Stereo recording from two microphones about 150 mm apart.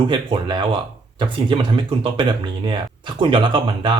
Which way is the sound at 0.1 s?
30° right (ahead or behind).